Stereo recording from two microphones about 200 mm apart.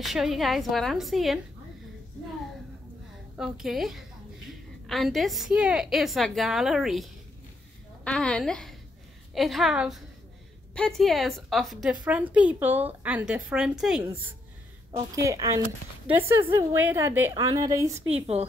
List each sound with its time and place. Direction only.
0.0 s a woman's voice: centre (ahead or behind)
3.3 s a woman's voice: 5° right (ahead or behind)
15.1 s a woman's voice: 15° right (ahead or behind)
17.9 s speech: 30° right (ahead or behind)